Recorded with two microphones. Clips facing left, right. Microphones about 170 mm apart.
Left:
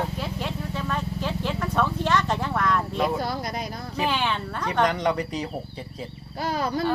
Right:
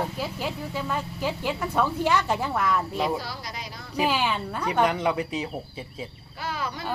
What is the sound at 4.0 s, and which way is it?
Speech, 5° right (ahead or behind).